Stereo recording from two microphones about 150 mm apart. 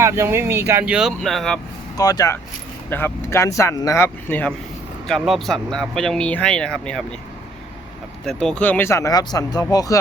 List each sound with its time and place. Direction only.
0.0 s speech: 15° right (ahead or behind); by 1.5 s centre (ahead or behind)
2.0 s speech: 25° left (ahead or behind)
5.0 s speech: centre (ahead or behind)
8.2 s speech: 5° left (ahead or behind); by 10.0 s 20° left (ahead or behind)